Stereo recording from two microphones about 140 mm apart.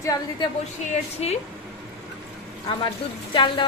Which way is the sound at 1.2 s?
45° left (ahead or behind).